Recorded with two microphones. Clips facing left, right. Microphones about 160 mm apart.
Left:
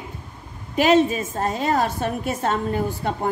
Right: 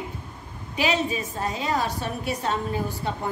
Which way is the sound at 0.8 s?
45° left (ahead or behind).